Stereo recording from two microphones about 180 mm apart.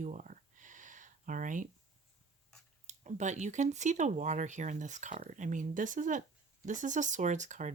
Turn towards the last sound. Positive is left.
turn(degrees=-40)  # may be behind; listen again after turning